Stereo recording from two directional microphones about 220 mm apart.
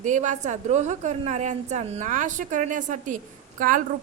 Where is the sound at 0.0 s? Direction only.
35° right (ahead or behind).